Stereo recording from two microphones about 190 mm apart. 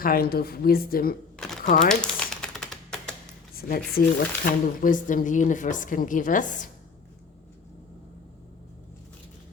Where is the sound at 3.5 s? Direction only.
50° left (ahead or behind).